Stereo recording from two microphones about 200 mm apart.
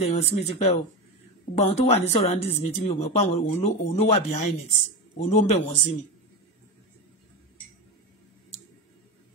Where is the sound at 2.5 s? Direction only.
30° left (ahead or behind).